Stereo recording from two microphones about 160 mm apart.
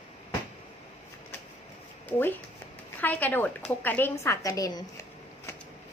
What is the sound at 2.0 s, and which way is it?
A woman's voice, 10° left (ahead or behind).